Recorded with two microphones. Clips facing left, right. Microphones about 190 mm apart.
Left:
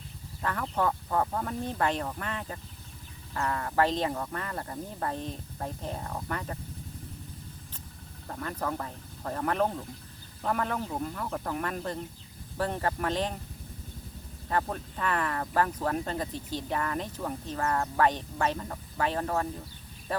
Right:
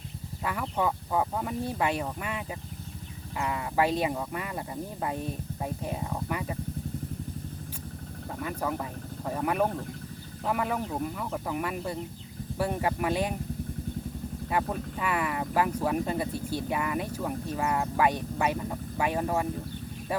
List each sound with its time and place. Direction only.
0.4 s speech: 10° right (ahead or behind)
8.4 s speech: 10° right (ahead or behind)
14.5 s speech: 10° right (ahead or behind)